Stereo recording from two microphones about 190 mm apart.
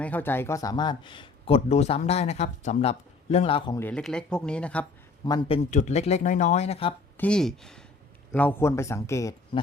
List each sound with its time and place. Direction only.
0.0 s speech: 10° left (ahead or behind); by 3.8 s 30° left (ahead or behind)
3.8 s speech: 10° left (ahead or behind)
5.2 s speech: 25° left (ahead or behind)
5.7 s speech: 35° left (ahead or behind)
7.2 s speech: 5° left (ahead or behind)